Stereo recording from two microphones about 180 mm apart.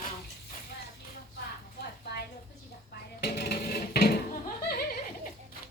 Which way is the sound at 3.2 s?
65° left (ahead or behind).